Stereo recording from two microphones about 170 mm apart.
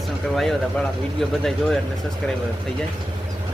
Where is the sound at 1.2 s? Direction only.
Centre (ahead or behind).